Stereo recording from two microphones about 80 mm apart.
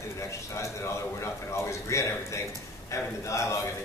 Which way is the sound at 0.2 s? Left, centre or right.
Left.